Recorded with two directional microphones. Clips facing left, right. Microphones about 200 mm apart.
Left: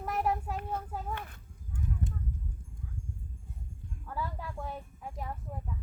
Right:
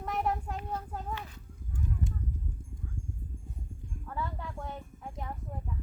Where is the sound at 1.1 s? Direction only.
55° left (ahead or behind).